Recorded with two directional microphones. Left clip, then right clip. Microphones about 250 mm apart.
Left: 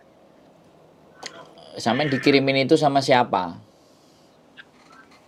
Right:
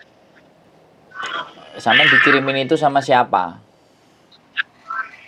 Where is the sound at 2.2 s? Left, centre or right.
Left.